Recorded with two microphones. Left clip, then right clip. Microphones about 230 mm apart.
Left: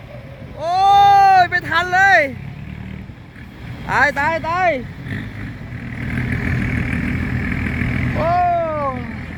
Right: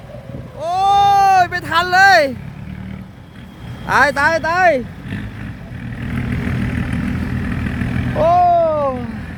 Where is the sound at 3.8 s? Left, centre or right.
Right.